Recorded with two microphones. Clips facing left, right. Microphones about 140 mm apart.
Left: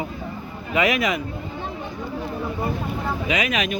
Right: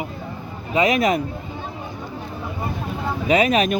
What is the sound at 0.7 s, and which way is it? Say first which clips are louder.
Speech: right 2 dB; 30° right (ahead or behind).